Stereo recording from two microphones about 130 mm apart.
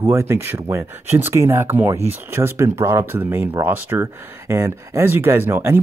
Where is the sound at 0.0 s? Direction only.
20° right (ahead or behind).